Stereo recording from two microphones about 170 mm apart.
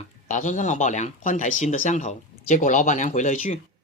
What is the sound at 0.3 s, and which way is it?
Speech, 45° left (ahead or behind).